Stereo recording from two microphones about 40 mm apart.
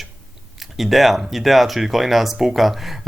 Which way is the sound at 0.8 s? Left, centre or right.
Centre.